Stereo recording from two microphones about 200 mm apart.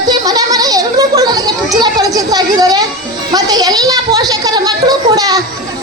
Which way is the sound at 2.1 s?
20° right (ahead or behind).